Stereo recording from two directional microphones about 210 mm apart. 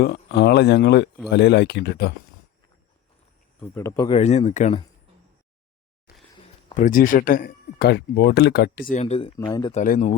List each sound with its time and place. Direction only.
0.0 s speech: 50° left (ahead or behind)
3.6 s speech: 10° left (ahead or behind)
4.2 s speech: 30° left (ahead or behind)
6.7 s speech: 40° left (ahead or behind)
8.9 s speech: 30° left (ahead or behind)
9.7 s speech: 40° left (ahead or behind)